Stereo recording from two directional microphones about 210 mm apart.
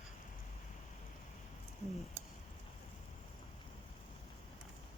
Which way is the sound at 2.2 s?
30° right (ahead or behind).